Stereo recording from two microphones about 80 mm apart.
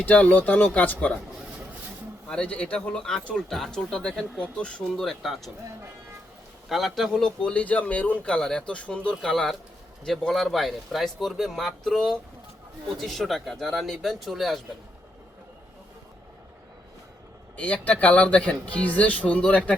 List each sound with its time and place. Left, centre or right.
0.0 s speech: centre
2.3 s a man's voice: centre
6.7 s a man's voice: centre
17.6 s a man's voice: centre